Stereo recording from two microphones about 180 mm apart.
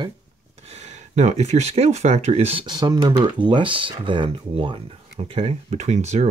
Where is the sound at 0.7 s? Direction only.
40° right (ahead or behind).